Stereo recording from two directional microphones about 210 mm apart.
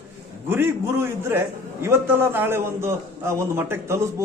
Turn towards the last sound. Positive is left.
turn(degrees=-10)  # may be behind; listen again after turning